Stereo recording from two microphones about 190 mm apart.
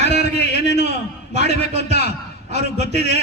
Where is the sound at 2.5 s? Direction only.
35° right (ahead or behind).